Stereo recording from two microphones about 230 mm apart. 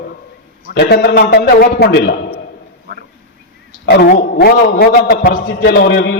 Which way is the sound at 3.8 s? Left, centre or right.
Left.